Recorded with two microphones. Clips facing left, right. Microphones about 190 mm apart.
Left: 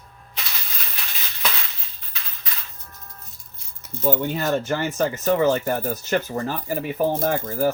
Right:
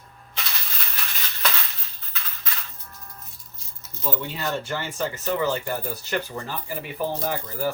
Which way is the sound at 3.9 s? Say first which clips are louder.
Left 8 dB; 50° left (ahead or behind).